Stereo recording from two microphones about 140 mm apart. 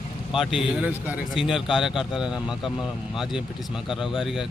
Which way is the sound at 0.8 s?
10° right (ahead or behind).